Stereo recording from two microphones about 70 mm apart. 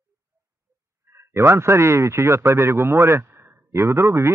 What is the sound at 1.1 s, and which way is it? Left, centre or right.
Speech, right.